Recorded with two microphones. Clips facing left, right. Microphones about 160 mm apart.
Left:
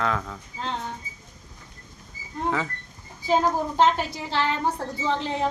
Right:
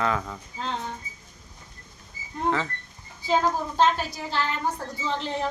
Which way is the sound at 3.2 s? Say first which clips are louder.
Left 2 dB; 15° left (ahead or behind).